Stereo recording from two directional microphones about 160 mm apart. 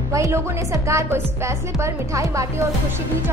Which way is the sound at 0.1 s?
20° right (ahead or behind).